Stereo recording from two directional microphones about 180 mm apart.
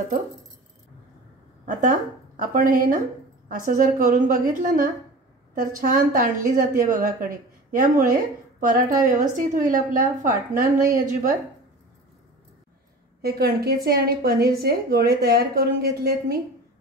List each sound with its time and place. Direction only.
1.7 s a woman's voice: 45° right (ahead or behind)
13.2 s a woman's voice: 60° right (ahead or behind)